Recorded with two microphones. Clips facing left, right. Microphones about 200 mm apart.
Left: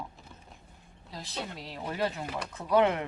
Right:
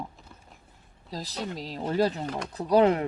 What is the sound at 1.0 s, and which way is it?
Speech, 40° right (ahead or behind).